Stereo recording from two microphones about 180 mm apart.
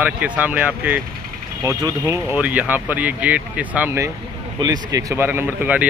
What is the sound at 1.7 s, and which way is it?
Speech, 20° right (ahead or behind).